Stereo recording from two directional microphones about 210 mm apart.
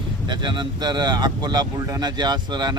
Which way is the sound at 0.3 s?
20° right (ahead or behind).